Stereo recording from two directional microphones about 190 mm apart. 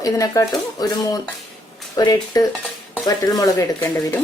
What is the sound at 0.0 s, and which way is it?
A woman's voice, 20° left (ahead or behind).